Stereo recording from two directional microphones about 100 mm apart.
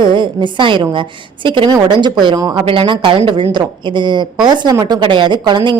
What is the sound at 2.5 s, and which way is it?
A woman's voice, 60° right (ahead or behind).